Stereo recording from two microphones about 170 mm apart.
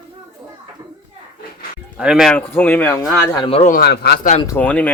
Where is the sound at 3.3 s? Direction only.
25° left (ahead or behind).